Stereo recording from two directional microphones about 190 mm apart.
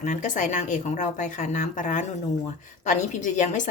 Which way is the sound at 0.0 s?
40° left (ahead or behind).